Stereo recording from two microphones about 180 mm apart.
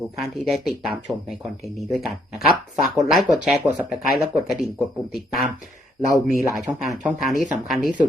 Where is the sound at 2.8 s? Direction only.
Centre (ahead or behind).